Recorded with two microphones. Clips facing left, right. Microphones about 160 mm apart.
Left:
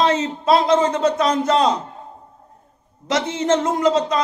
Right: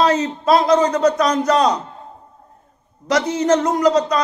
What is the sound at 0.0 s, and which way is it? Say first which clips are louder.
A man's voice: right 2 dB; 25° left (ahead or behind).